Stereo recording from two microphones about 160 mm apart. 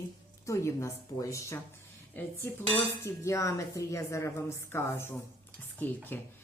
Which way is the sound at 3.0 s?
20° left (ahead or behind).